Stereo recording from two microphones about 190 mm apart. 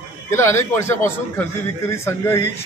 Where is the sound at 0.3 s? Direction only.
15° left (ahead or behind).